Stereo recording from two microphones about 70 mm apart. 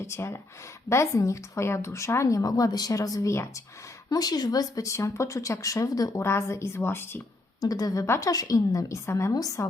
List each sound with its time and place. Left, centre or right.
0.0 s speech: left
4.1 s speech: left
6.2 s speech: left
7.6 s a woman's voice: left
8.0 s speech: left
8.3 s a woman's voice: left